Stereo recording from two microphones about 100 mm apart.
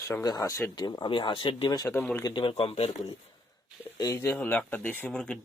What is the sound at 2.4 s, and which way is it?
Speech, 65° left (ahead or behind).